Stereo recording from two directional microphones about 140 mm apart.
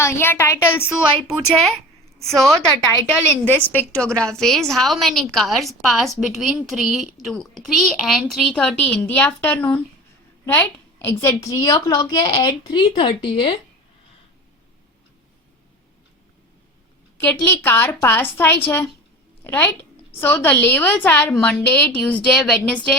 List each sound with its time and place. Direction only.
0.0 s a woman's voice: 15° left (ahead or behind)
2.1 s a woman's voice: 5° left (ahead or behind); by 13.6 s 35° left (ahead or behind)
17.4 s a woman's voice: 15° left (ahead or behind)
21.3 s a woman's voice: centre (ahead or behind)
21.6 s a woman's voice: 10° left (ahead or behind)